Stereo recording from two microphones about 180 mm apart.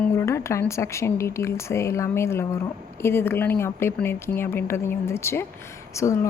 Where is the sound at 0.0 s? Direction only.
15° left (ahead or behind).